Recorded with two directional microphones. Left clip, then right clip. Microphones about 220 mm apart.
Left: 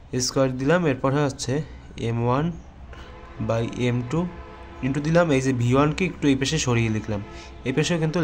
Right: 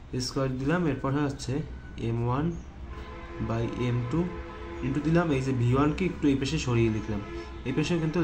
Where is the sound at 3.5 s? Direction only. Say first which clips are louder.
Left 7 dB; 45° left (ahead or behind).